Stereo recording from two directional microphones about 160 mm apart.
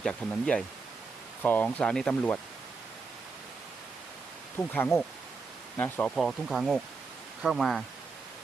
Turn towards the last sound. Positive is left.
turn(degrees=0)  # may be behind; listen again after turning